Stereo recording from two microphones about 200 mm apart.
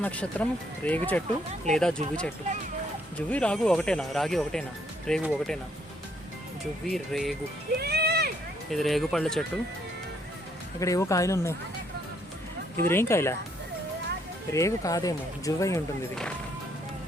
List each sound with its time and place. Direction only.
0.0 s speech: 5° left (ahead or behind)
6.8 s speech: centre (ahead or behind)
7.8 s a sound: 50° right (ahead or behind)
8.7 s speech: centre (ahead or behind)
10.8 s speech: 15° left (ahead or behind)
12.9 s speech: 10° left (ahead or behind)
14.5 s speech: 15° left (ahead or behind)